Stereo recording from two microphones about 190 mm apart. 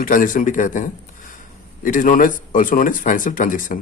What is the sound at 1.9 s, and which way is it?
Speech, 45° left (ahead or behind).